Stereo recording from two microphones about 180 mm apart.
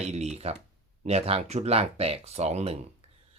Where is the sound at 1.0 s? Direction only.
35° right (ahead or behind).